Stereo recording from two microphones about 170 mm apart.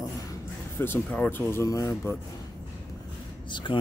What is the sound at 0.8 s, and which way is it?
Speech, 10° left (ahead or behind).